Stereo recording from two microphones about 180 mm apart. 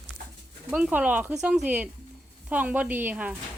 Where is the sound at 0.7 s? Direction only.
5° right (ahead or behind).